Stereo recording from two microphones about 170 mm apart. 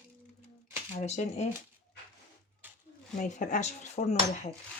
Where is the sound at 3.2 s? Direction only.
50° left (ahead or behind).